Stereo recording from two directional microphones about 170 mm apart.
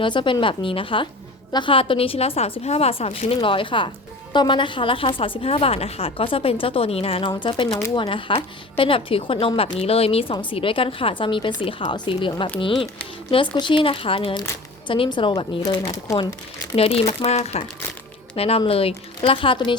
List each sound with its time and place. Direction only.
0.0 s a woman's voice: 30° left (ahead or behind)
16.7 s a woman's voice: 35° left (ahead or behind)